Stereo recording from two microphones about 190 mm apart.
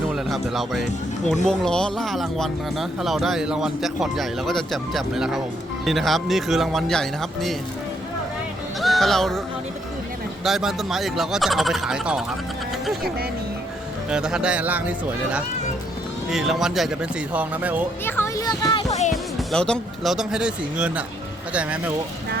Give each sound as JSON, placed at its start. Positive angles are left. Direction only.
{"t": 0.1, "sound": "speech", "side_deg": 0}
{"t": 8.8, "sound": "speech", "side_deg": 0}
{"t": 10.4, "sound": "speech", "side_deg": 0}
{"t": 14.1, "sound": "speech", "side_deg": -5}
{"t": 18.0, "sound": "speech", "side_deg": 15}
{"t": 19.1, "sound": "speech", "side_deg": 0}